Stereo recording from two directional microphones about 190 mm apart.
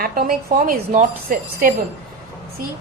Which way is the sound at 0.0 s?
50° right (ahead or behind).